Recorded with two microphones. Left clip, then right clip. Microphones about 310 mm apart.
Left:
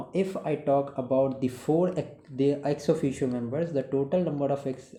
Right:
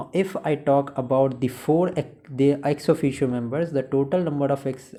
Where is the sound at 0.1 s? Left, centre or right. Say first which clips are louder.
Right 5 dB; right.